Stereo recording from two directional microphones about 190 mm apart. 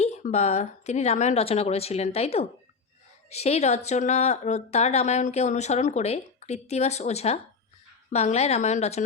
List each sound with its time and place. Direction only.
0.0 s speech: 35° left (ahead or behind)